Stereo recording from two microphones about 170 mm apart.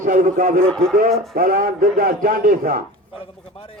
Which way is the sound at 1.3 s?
60° right (ahead or behind).